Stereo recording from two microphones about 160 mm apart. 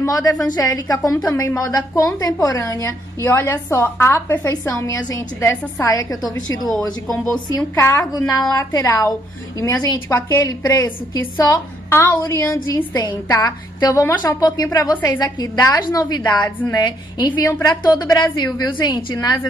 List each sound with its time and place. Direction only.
0.0 s a woman's voice: 20° left (ahead or behind)